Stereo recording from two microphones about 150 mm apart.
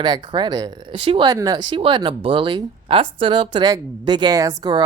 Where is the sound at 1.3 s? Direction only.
25° right (ahead or behind).